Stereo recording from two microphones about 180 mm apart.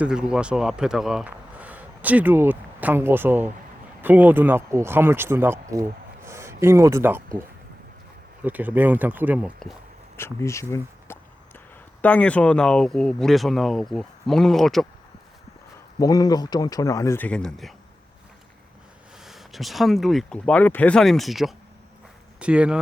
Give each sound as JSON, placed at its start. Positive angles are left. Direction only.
{"t": 0.0, "sound": "speech", "side_deg": -5}
{"t": 8.4, "sound": "speech", "side_deg": -10}
{"t": 10.2, "sound": "speech", "side_deg": 15}
{"t": 16.0, "sound": "speech", "side_deg": 20}
{"t": 19.2, "sound": "speech", "side_deg": 0}